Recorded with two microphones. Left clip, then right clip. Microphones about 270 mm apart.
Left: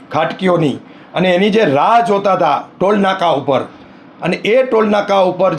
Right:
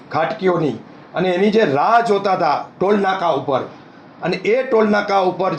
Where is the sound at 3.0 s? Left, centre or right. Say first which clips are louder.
Left 4 dB; left.